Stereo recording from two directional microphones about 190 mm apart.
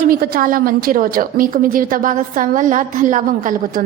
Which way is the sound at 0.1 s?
50° right (ahead or behind).